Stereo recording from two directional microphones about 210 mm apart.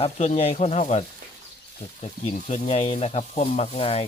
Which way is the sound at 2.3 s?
30° left (ahead or behind).